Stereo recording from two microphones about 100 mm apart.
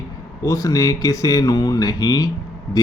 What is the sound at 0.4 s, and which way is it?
Speech, 35° left (ahead or behind).